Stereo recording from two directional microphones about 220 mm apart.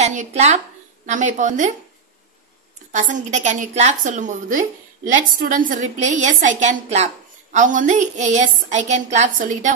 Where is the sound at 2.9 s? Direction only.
35° right (ahead or behind).